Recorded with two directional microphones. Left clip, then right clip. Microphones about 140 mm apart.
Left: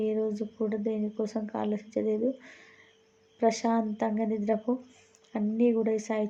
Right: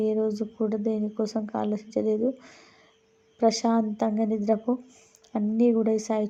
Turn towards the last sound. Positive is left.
turn(degrees=-35)  # may be behind; listen again after turning